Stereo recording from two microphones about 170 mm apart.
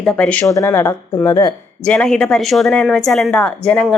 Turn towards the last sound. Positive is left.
turn(degrees=5)  # may be behind; listen again after turning